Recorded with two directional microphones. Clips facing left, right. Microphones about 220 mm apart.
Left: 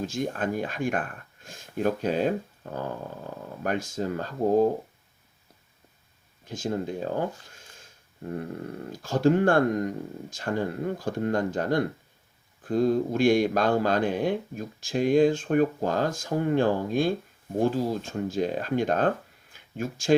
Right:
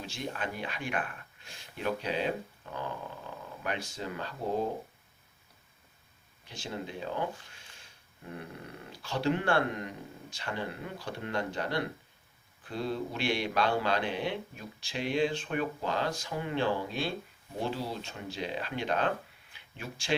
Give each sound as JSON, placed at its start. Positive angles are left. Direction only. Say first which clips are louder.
{"t": 0.0, "sound": "speech", "louder": "left 8 dB", "side_deg": 45}
{"t": 6.4, "sound": "speech", "louder": "left 10 dB", "side_deg": 45}